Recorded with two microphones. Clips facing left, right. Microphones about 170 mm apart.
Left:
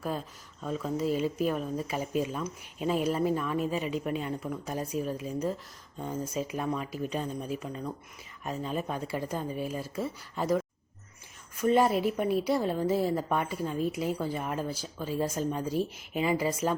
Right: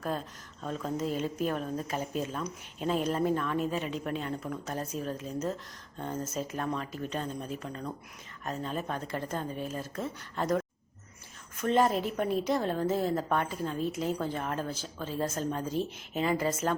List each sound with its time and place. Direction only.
0.0 s speech: 5° left (ahead or behind)